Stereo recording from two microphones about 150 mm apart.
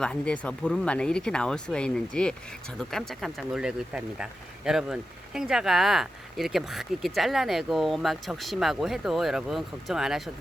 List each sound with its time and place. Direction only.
0.0 s speech: 5° left (ahead or behind)